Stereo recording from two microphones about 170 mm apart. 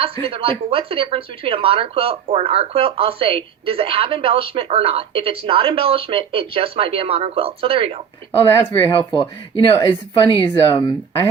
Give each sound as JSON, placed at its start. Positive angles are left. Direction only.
{"t": 0.0, "sound": "speech", "side_deg": -35}
{"t": 8.4, "sound": "speech", "side_deg": 15}
{"t": 9.7, "sound": "a woman's voice", "side_deg": 25}